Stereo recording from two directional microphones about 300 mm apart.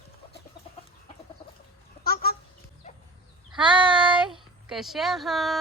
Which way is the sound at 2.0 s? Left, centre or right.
Left.